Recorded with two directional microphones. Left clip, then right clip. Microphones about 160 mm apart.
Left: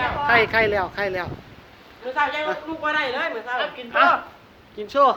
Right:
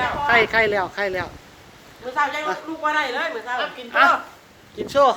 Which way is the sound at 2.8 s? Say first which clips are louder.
Right 1 dB; 45° left (ahead or behind).